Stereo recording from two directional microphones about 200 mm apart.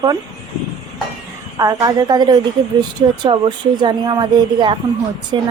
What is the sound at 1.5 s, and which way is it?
A woman's voice, 15° right (ahead or behind).